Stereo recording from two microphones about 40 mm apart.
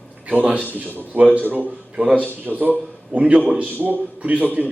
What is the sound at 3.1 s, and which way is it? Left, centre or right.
A man's voice, right.